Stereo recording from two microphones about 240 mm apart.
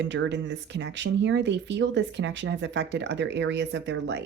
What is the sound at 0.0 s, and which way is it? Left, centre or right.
Speech, right.